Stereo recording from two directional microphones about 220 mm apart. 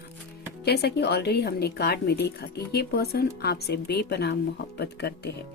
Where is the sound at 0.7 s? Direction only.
50° left (ahead or behind).